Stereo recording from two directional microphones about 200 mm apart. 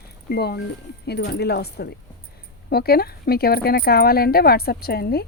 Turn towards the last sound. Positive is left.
turn(degrees=50)  # may be behind; listen again after turning